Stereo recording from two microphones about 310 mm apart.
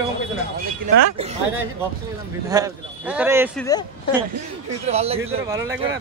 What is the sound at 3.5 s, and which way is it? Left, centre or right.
Speech, centre.